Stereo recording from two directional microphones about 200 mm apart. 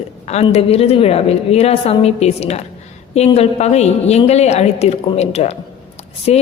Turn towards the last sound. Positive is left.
turn(degrees=30)  # may be behind; listen again after turning